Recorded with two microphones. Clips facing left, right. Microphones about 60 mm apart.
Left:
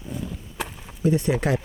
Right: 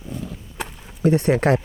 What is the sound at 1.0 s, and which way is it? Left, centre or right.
Speech, right.